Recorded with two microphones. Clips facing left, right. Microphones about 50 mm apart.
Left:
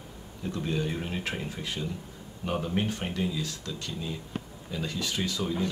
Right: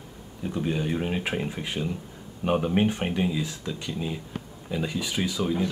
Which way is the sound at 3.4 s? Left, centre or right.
Centre.